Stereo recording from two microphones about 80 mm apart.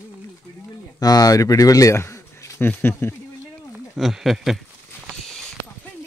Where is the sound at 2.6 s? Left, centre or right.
Left.